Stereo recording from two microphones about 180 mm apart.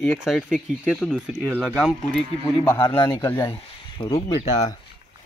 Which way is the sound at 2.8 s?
15° left (ahead or behind).